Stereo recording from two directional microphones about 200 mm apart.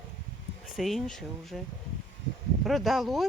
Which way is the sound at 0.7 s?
Centre (ahead or behind).